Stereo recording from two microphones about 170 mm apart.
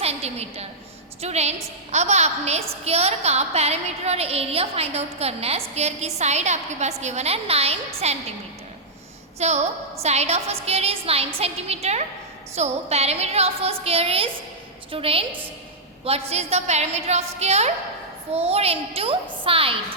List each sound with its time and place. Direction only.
0.0 s a woman's voice: 35° right (ahead or behind)
9.4 s a woman's voice: 40° right (ahead or behind)